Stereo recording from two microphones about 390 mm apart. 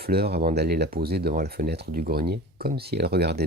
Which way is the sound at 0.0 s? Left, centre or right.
Right.